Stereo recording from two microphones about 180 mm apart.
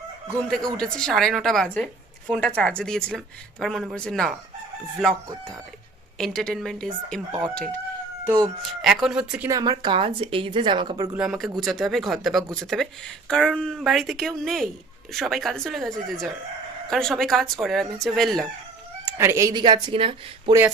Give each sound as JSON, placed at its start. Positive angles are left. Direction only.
{"t": 0.4, "sound": "speech", "side_deg": 5}
{"t": 9.5, "sound": "speech", "side_deg": -20}
{"t": 11.1, "sound": "speech", "side_deg": -5}
{"t": 19.0, "sound": "speech", "side_deg": -15}
{"t": 20.5, "sound": "speech", "side_deg": -15}